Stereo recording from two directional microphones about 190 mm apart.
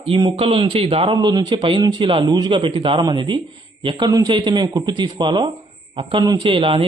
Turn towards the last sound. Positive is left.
turn(degrees=-25)  # may be behind; listen again after turning